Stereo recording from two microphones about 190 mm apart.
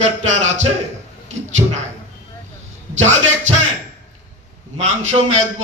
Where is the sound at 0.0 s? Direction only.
40° right (ahead or behind).